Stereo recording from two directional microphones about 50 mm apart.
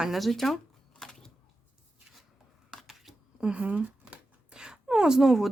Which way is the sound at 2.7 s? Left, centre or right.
Centre.